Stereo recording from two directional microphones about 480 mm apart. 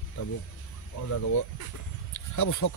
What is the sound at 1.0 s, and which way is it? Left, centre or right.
Speech, left.